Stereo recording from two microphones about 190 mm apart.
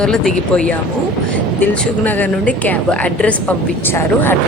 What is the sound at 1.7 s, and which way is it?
A woman's voice, 5° left (ahead or behind).